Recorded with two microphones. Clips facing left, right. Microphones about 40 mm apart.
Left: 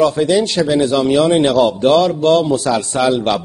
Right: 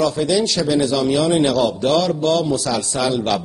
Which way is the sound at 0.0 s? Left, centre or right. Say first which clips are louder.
Left 4 dB; left.